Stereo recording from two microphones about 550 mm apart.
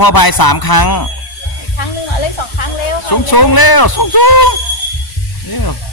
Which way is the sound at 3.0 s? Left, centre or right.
Left.